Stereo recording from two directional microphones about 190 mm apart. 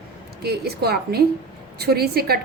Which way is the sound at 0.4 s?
55° right (ahead or behind).